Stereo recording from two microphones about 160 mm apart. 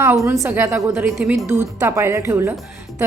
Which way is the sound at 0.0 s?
15° right (ahead or behind).